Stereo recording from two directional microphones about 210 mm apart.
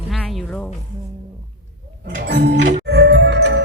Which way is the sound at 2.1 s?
55° right (ahead or behind).